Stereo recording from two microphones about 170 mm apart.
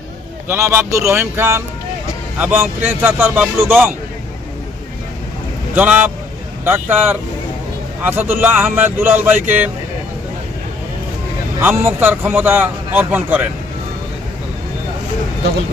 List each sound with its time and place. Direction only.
0.4 s a man's voice: 15° right (ahead or behind)
5.7 s a man's voice: 10° right (ahead or behind)
11.6 s a man's voice: 15° right (ahead or behind)